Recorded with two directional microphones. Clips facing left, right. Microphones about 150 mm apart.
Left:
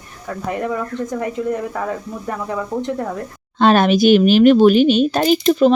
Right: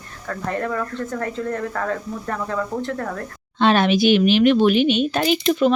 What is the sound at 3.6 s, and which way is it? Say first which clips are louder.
Speech: left 4 dB; 45° left (ahead or behind).